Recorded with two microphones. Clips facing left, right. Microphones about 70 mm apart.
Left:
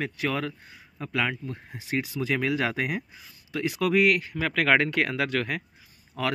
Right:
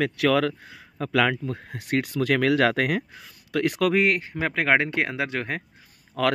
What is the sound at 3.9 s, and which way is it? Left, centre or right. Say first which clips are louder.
A man's voice: even; right.